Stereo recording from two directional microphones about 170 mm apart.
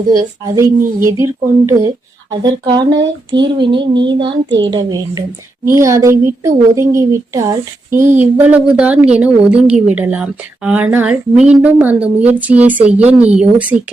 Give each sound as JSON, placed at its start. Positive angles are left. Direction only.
{"t": 0.1, "sound": "a woman's voice", "side_deg": -20}
{"t": 4.4, "sound": "a woman's voice", "side_deg": -90}
{"t": 4.7, "sound": "a woman's voice", "side_deg": -25}